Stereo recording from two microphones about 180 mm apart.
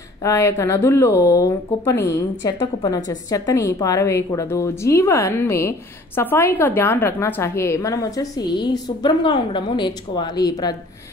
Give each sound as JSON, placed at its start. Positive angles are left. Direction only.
{"t": 0.2, "sound": "a woman's voice", "side_deg": 15}